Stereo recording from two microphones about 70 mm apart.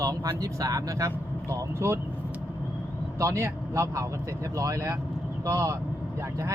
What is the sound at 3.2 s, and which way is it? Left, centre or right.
Speech, right.